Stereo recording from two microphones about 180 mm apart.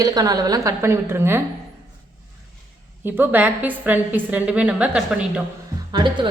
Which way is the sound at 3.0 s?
10° right (ahead or behind).